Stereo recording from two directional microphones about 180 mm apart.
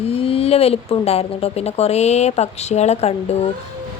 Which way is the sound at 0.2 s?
35° left (ahead or behind).